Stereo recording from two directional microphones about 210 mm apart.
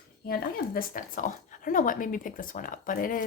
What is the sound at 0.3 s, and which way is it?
Speech, 45° left (ahead or behind).